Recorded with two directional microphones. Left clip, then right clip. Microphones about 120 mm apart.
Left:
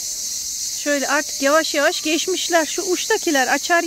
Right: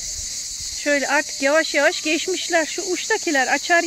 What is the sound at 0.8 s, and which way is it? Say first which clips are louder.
Speech: right 1 dB; 15° left (ahead or behind).